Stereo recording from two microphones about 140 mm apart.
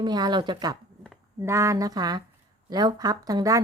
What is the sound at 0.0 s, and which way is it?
A woman's voice, 30° right (ahead or behind).